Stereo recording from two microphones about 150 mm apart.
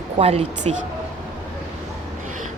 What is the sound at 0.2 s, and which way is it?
Speech, 45° right (ahead or behind).